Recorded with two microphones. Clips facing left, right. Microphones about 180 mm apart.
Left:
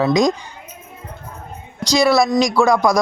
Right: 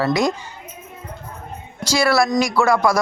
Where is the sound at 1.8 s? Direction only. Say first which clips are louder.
Left 3 dB; 15° left (ahead or behind).